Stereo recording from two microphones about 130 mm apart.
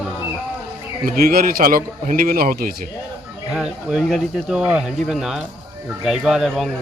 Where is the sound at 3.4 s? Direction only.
5° right (ahead or behind).